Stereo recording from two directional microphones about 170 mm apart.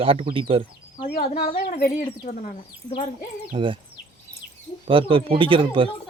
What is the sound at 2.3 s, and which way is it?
Speech, 60° left (ahead or behind).